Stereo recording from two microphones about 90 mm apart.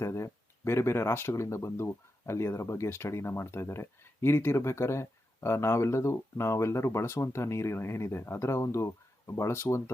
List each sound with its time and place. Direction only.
0.0 s speech: 30° left (ahead or behind)